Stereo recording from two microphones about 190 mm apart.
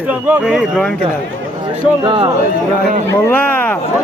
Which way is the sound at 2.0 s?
25° right (ahead or behind).